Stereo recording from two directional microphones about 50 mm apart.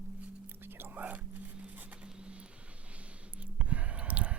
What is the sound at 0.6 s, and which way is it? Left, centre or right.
Whispering, right.